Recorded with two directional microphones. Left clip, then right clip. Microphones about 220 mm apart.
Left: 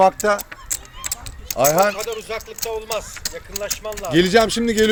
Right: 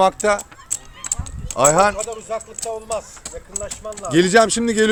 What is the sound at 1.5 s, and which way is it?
Speech, 10° right (ahead or behind).